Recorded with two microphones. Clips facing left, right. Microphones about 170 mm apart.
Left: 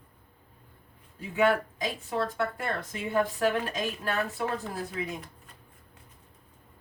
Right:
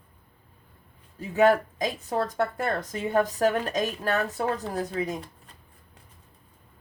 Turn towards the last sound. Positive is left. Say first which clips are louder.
# right 5 dB
turn(degrees=-40)  # may be behind; listen again after turning